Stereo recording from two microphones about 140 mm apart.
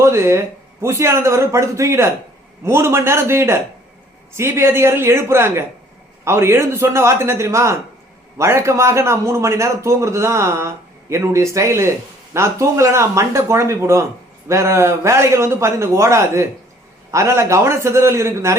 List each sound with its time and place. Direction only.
0.0 s a man's voice: 20° right (ahead or behind)